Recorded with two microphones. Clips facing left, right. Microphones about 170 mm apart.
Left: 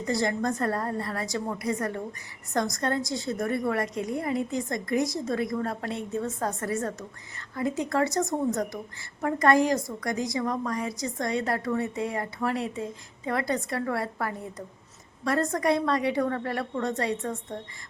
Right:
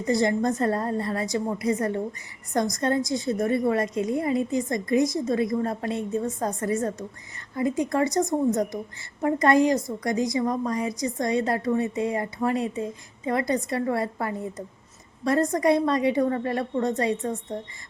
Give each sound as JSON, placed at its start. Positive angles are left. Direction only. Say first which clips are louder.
{"t": 0.0, "sound": "a woman's voice", "louder": "right 4 dB", "side_deg": -20}